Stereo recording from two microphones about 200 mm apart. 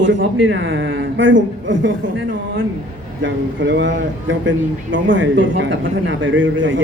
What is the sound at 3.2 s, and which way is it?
Speech, 65° right (ahead or behind).